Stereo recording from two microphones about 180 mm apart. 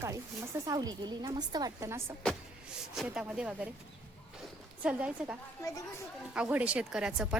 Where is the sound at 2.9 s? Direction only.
5° right (ahead or behind).